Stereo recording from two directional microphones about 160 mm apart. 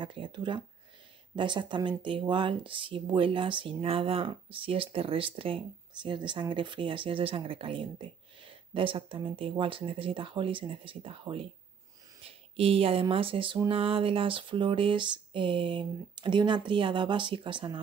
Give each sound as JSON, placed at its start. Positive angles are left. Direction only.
{"t": 0.0, "sound": "speech", "side_deg": -30}